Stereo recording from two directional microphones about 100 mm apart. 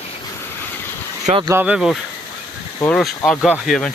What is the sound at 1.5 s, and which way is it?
Speech, 15° right (ahead or behind).